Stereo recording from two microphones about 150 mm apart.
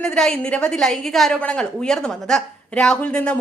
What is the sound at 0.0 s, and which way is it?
A woman's voice, 5° left (ahead or behind).